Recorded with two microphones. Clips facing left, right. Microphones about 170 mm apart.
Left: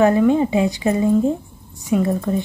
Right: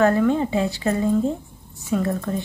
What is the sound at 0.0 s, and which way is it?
Speech, 15° left (ahead or behind).